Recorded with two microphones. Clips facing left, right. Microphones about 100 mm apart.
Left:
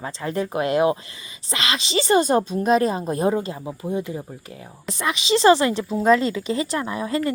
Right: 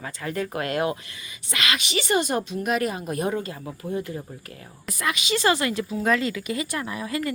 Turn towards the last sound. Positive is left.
turn(degrees=30)  # may be behind; listen again after turning